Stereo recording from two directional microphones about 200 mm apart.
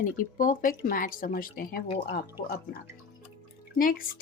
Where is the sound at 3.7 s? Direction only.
45° left (ahead or behind).